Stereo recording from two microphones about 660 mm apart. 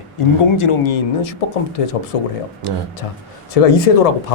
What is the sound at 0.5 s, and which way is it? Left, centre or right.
Speech, left.